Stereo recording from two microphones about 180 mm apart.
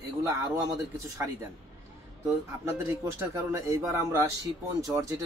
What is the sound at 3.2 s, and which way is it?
Speech, 15° right (ahead or behind).